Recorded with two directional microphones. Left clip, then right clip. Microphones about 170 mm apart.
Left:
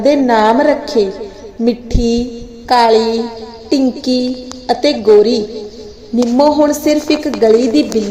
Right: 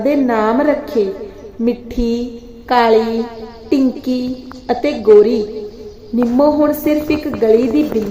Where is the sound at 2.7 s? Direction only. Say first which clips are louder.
Left 2 dB; 5° left (ahead or behind).